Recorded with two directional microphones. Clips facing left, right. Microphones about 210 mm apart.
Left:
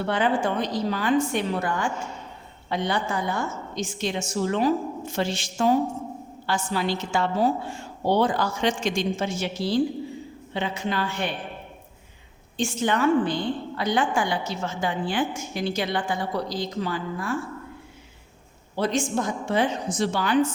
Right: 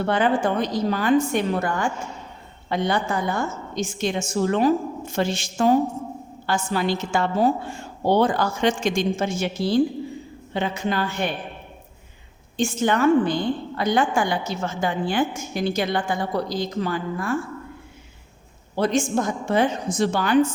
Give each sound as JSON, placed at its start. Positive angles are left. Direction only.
{"t": 0.0, "sound": "a woman's voice", "side_deg": -45}
{"t": 12.5, "sound": "a woman's voice", "side_deg": -45}
{"t": 18.8, "sound": "a woman's voice", "side_deg": -50}